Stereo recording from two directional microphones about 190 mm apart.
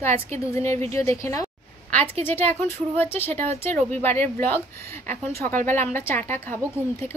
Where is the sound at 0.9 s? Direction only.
15° left (ahead or behind).